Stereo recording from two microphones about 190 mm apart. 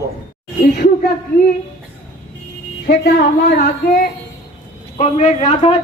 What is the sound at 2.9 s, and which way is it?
Speech, 55° left (ahead or behind).